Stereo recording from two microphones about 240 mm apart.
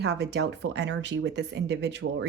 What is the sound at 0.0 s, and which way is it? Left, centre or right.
A woman's voice, right.